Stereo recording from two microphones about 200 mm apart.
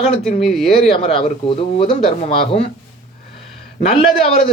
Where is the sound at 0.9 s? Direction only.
30° left (ahead or behind).